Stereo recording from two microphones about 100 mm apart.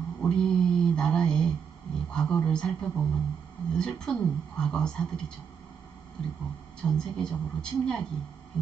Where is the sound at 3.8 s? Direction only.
5° left (ahead or behind).